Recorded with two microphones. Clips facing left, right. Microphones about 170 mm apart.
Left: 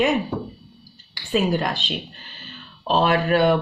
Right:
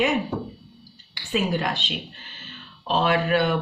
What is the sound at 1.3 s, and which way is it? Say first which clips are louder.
Speech: left 3 dB; 40° left (ahead or behind).